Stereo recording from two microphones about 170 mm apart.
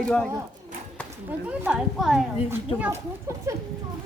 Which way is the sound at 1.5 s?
5° right (ahead or behind).